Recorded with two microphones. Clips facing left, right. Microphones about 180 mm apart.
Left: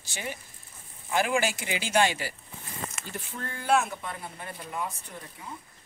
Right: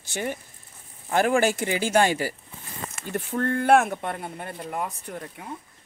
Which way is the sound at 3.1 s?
60° right (ahead or behind).